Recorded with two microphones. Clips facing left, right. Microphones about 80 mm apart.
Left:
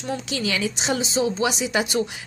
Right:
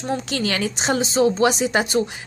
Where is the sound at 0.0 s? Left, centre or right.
Right.